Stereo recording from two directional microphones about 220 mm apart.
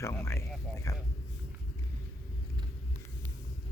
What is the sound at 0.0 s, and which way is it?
Speech, 10° left (ahead or behind).